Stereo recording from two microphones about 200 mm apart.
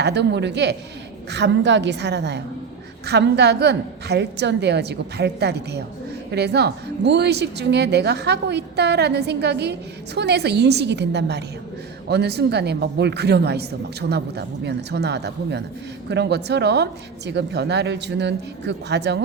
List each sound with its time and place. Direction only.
0.0 s a woman's voice: 60° right (ahead or behind)